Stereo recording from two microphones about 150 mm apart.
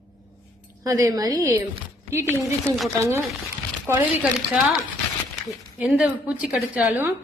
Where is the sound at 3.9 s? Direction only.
15° right (ahead or behind).